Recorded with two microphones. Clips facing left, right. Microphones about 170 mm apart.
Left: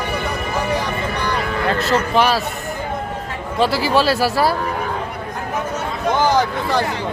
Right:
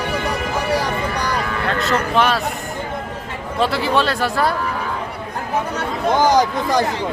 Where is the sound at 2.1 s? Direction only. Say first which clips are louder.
Left 1 dB; centre (ahead or behind).